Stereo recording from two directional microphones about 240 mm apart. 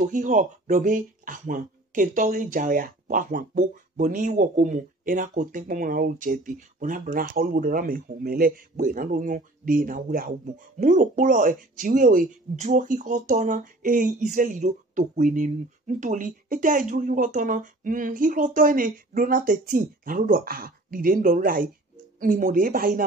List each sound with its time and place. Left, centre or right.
0.0 s speech: right